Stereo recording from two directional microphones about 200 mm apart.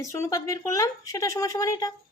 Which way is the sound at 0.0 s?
15° left (ahead or behind).